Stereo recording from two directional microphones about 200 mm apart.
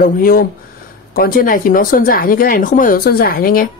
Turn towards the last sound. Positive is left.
turn(degrees=45)  # may be behind; listen again after turning